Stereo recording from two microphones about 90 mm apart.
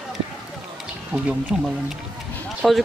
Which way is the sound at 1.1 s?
15° right (ahead or behind).